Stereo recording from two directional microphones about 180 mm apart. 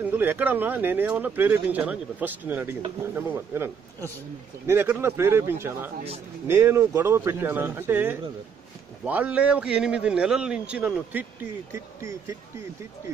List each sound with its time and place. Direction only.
0.0 s a man's voice: 10° right (ahead or behind)